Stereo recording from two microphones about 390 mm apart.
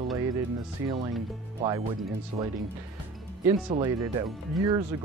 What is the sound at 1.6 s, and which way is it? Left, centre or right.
Speech, centre.